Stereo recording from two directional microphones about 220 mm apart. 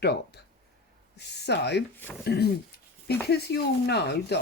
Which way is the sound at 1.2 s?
50° left (ahead or behind).